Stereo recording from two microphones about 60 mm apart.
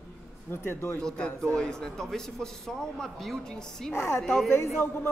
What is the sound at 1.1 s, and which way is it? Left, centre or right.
Speech, centre.